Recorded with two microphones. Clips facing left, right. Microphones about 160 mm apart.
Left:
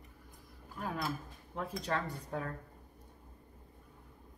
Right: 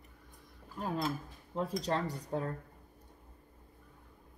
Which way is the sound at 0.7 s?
20° right (ahead or behind).